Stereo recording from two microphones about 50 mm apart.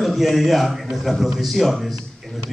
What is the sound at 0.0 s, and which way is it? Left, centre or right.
A man's voice, centre.